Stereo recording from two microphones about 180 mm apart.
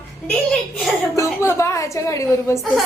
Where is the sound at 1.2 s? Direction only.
15° left (ahead or behind).